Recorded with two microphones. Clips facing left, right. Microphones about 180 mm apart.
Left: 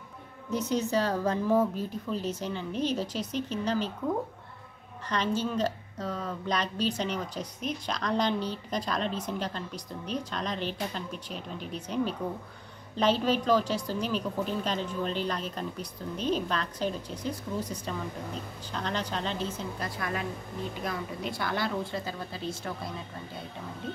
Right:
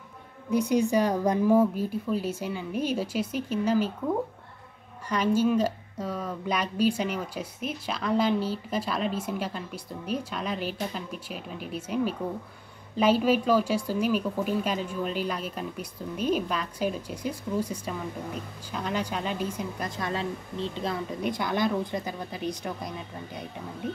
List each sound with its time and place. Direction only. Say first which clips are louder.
0.5 s speech: right 5 dB; 10° right (ahead or behind)
5.1 s speech: right 6 dB; 10° right (ahead or behind)
20.0 s a woman's voice: right 4 dB; 25° right (ahead or behind)